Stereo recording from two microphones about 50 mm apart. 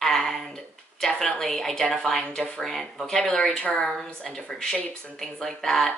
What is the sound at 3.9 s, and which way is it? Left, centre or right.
Speech, centre.